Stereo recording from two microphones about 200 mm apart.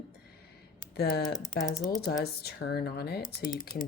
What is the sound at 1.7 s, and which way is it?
Speech, 15° left (ahead or behind).